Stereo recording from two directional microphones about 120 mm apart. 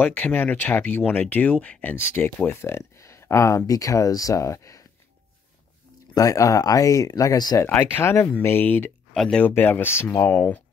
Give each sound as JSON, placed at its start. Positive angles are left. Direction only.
{"t": 0.0, "sound": "speech", "side_deg": 15}
{"t": 6.1, "sound": "speech", "side_deg": 30}
{"t": 7.6, "sound": "speech", "side_deg": 20}
{"t": 9.1, "sound": "speech", "side_deg": 5}
{"t": 9.5, "sound": "speech", "side_deg": 15}